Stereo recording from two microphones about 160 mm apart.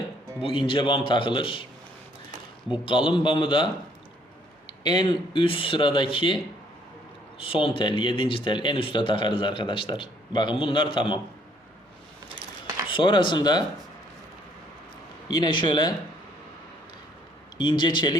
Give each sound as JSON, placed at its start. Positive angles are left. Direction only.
{"t": 0.4, "sound": "speech", "side_deg": 30}
{"t": 2.7, "sound": "speech", "side_deg": 30}
{"t": 12.9, "sound": "speech", "side_deg": 30}
{"t": 15.3, "sound": "speech", "side_deg": 30}
{"t": 17.6, "sound": "speech", "side_deg": 30}